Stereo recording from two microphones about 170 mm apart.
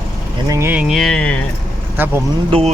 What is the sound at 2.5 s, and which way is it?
Speech, 35° right (ahead or behind).